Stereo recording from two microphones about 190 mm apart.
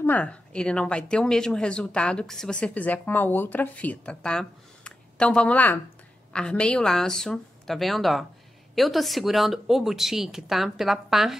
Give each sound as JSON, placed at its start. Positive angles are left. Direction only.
{"t": 0.0, "sound": "speech", "side_deg": 10}